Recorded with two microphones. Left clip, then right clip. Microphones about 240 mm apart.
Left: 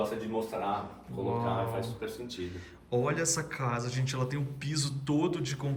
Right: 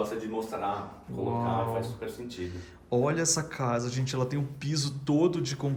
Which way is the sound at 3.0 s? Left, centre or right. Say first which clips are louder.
Right 3 dB; centre.